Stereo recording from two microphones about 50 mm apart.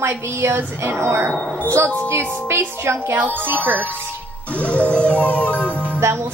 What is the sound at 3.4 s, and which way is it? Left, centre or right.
Speech, right.